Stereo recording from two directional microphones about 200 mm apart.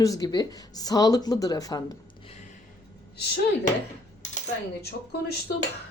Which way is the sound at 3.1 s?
55° left (ahead or behind).